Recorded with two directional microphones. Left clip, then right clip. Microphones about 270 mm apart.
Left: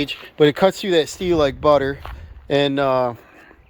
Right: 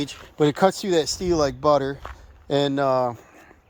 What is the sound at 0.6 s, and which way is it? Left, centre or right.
Speech, centre.